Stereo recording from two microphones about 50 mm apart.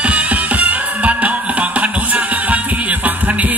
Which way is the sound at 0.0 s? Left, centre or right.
Right.